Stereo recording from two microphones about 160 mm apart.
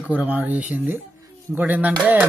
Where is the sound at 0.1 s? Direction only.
5° right (ahead or behind).